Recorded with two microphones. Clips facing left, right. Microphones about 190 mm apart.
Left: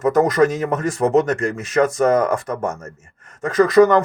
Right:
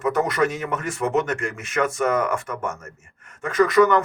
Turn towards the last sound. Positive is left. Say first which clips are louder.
# left 4 dB
turn(degrees=35)  # may be behind; listen again after turning